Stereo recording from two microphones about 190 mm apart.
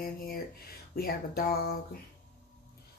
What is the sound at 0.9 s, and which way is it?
Speech, 55° left (ahead or behind).